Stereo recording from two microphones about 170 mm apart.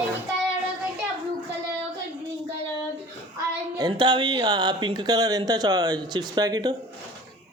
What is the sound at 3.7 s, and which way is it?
Speech, 25° right (ahead or behind).